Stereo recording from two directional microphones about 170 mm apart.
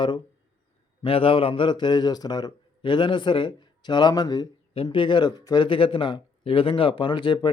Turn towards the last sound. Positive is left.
turn(degrees=25)  # may be behind; listen again after turning